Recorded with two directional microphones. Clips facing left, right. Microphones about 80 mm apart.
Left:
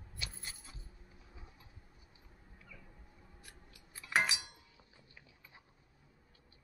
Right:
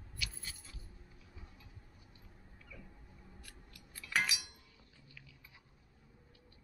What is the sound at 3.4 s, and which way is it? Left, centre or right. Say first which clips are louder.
Scissors: right 1 dB; left.